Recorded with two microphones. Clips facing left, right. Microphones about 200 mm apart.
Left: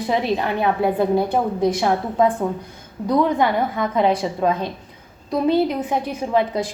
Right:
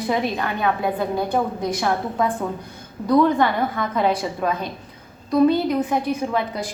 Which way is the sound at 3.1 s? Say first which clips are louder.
Right 1 dB; 20° left (ahead or behind).